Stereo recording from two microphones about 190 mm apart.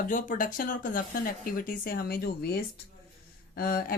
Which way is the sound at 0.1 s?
45° left (ahead or behind).